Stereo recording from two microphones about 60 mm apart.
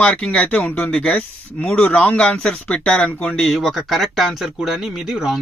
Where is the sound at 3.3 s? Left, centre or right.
Centre.